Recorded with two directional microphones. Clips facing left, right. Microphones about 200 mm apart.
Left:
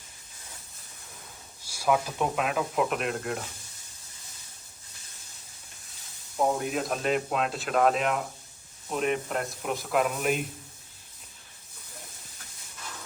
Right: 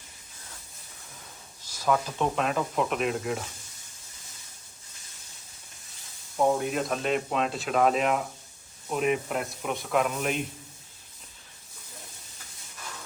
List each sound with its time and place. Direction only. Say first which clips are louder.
1.6 s speech: even; 10° left (ahead or behind)
6.3 s speech: right 2 dB; centre (ahead or behind)